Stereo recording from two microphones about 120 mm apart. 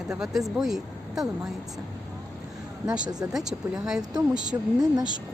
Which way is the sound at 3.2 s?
5° right (ahead or behind).